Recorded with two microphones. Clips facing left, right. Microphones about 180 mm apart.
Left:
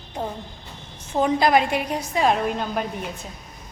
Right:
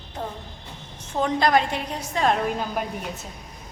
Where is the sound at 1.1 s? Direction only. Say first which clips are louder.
Left 2 dB; 10° left (ahead or behind).